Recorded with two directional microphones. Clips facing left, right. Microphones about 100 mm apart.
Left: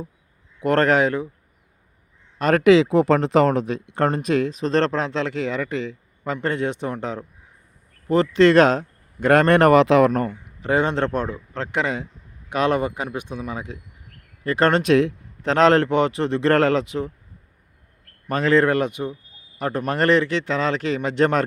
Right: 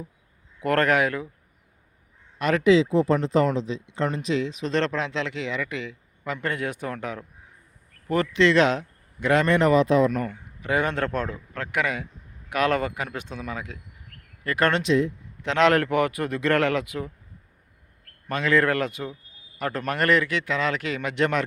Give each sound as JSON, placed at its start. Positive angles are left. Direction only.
{"t": 0.6, "sound": "speech", "side_deg": 30}
{"t": 2.4, "sound": "speech", "side_deg": 45}
{"t": 2.6, "sound": "speech", "side_deg": 70}
{"t": 8.4, "sound": "speech", "side_deg": 45}
{"t": 10.2, "sound": "speech", "side_deg": 30}
{"t": 18.3, "sound": "speech", "side_deg": 35}